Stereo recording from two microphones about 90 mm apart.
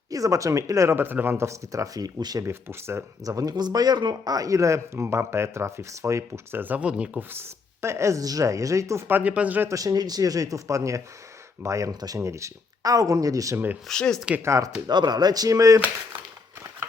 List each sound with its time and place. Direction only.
0.1 s speech: 40° right (ahead or behind)
2.4 s speech: 30° right (ahead or behind)
3.2 s speech: 40° right (ahead or behind); by 9.6 s 15° right (ahead or behind)
9.6 s speech: 40° right (ahead or behind)
13.8 s speech: 5° left (ahead or behind)
14.4 s speech: 35° right (ahead or behind)
14.8 s speech: 55° right (ahead or behind); by 15.8 s 40° right (ahead or behind)